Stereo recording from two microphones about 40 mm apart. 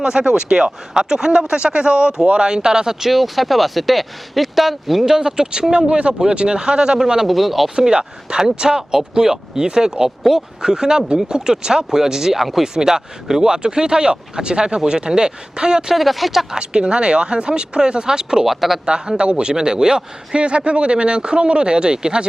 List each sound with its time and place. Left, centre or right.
0.0 s speech: right; by 5.1 s centre
5.1 s speech: centre
7.3 s speech: centre
7.8 s speech: right
16.0 s speech: centre
16.6 s speech: right
18.4 s speech: centre
18.9 s speech: right